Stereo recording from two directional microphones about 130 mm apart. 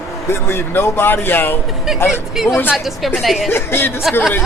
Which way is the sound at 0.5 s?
15° left (ahead or behind).